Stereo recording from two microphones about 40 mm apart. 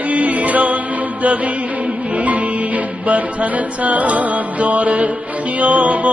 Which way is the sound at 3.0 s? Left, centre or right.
Right.